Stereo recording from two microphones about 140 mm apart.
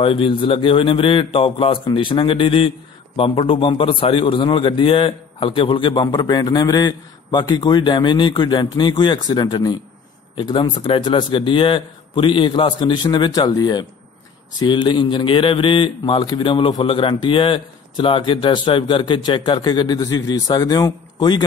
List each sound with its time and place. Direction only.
0.0 s speech: 40° left (ahead or behind)